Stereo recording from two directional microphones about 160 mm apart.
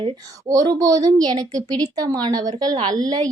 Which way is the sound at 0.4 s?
25° right (ahead or behind).